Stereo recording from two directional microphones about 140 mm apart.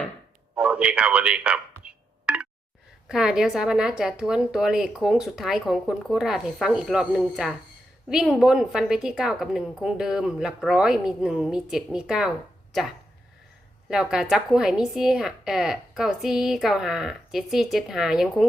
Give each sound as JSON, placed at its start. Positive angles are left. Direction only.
{"t": 0.5, "sound": "a sound", "side_deg": -10}
{"t": 3.1, "sound": "speech", "side_deg": -5}
{"t": 13.9, "sound": "speech", "side_deg": -5}